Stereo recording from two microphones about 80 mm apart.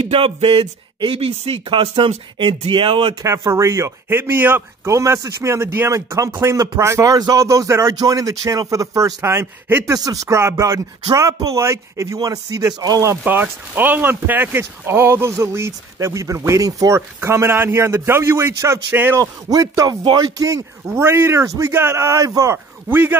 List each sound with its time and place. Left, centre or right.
2.3 s speech: right
3.2 s speech: right
4.8 s a man's voice: right
7.4 s a man's voice: right
9.2 s speech: right
9.9 s a man's voice: right
13.2 s speech: right
19.1 s a man's voice: right
20.0 s speech: right
20.8 s speech: right
22.2 s a man's voice: right
22.5 s a man's voice: right